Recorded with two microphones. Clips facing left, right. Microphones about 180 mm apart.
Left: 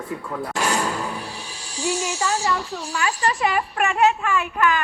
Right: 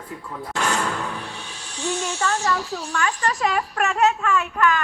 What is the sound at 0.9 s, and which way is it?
Music, 35° left (ahead or behind).